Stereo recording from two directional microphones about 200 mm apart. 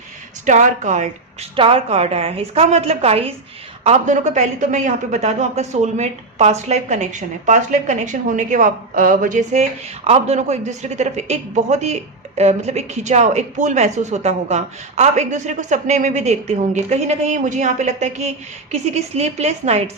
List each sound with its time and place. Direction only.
0.4 s speech: 40° right (ahead or behind)